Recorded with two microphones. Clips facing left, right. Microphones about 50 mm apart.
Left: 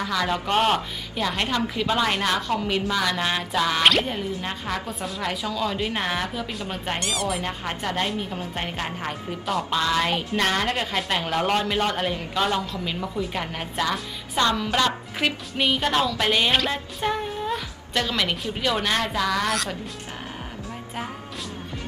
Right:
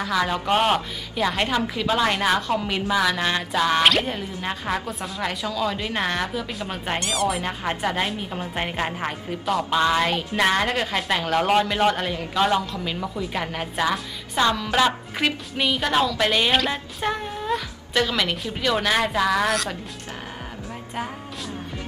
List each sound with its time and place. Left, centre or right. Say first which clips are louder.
0.1 s a woman's voice: right 2 dB; centre
8.4 s a woman's voice: right 3 dB; centre
9.5 s a woman's voice: right 2 dB; centre
9.8 s a woman's voice: right 3 dB; centre
14.7 s a woman's voice: right 2 dB; centre
15.1 s a woman's voice: right 1 dB; centre